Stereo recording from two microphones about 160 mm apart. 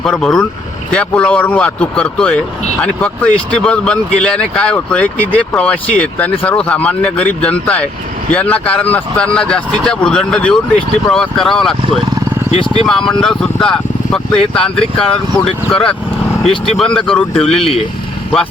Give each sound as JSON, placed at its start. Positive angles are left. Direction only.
{"t": 0.0, "sound": "speech", "side_deg": 5}
{"t": 12.5, "sound": "speech", "side_deg": 35}
{"t": 12.8, "sound": "speech", "side_deg": 5}